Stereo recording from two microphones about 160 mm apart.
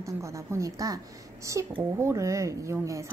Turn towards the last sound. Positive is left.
turn(degrees=-20)  # may be behind; listen again after turning